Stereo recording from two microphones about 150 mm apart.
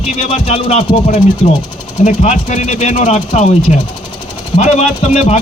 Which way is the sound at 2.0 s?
50° left (ahead or behind).